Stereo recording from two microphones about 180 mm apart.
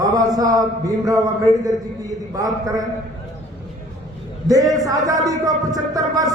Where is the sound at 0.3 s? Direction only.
20° right (ahead or behind).